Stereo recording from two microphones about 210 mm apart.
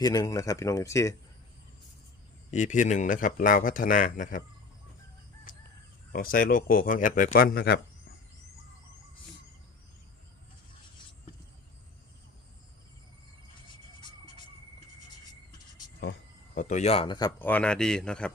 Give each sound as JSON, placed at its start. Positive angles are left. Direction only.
{"t": 0.0, "sound": "speech", "side_deg": 15}
{"t": 2.5, "sound": "a man's voice", "side_deg": 35}
{"t": 6.1, "sound": "speech", "side_deg": 45}
{"t": 16.6, "sound": "speech", "side_deg": 35}
{"t": 17.4, "sound": "speech", "side_deg": 5}